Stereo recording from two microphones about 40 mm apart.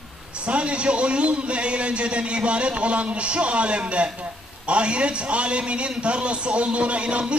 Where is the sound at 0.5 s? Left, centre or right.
Right.